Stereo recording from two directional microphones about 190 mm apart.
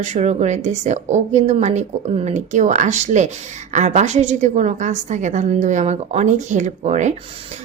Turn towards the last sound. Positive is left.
turn(degrees=-40)  # may be behind; listen again after turning